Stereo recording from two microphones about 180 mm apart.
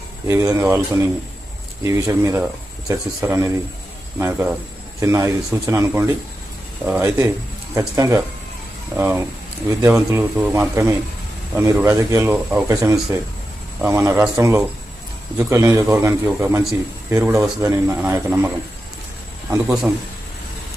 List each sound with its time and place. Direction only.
0.3 s speech: 15° right (ahead or behind)
19.6 s a man's voice: centre (ahead or behind)